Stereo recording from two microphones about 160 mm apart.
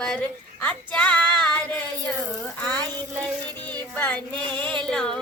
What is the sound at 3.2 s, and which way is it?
Female singing, 10° left (ahead or behind).